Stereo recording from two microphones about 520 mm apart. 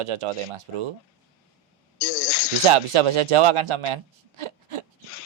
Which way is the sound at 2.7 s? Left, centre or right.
Right.